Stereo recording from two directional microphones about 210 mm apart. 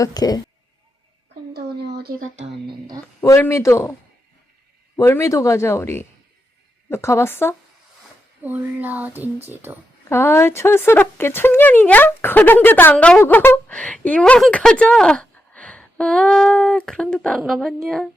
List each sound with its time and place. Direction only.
0.0 s speech: 20° left (ahead or behind)
1.5 s a sound: 50° right (ahead or behind)
2.4 s speech: 25° right (ahead or behind)
3.2 s speech: 10° left (ahead or behind)
4.9 s speech: 10° left (ahead or behind)
8.4 s speech: 10° right (ahead or behind)
10.1 s speech: 10° left (ahead or behind)